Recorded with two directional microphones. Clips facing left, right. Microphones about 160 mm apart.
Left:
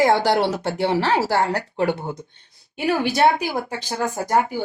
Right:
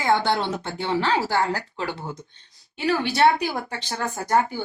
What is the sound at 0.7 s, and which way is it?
Speech, 75° left (ahead or behind).